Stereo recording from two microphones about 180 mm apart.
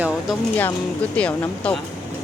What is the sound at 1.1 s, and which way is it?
Speech, 5° left (ahead or behind).